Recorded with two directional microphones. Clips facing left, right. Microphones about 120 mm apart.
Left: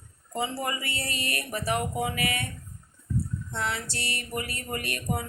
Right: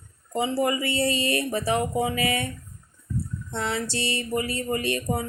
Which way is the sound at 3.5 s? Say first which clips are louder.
Right 5 dB; 25° right (ahead or behind).